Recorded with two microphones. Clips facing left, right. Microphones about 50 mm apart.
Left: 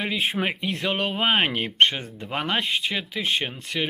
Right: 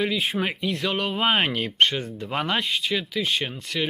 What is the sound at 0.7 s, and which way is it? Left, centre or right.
Speech, centre.